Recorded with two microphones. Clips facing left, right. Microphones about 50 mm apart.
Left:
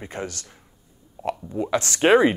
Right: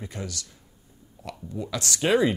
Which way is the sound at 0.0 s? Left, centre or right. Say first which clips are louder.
Left 4 dB; left.